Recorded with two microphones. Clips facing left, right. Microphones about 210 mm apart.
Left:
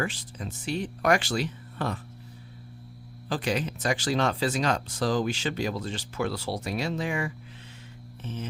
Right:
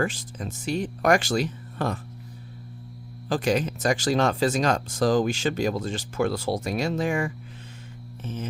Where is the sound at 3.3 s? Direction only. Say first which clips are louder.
Right 5 dB; 45° right (ahead or behind).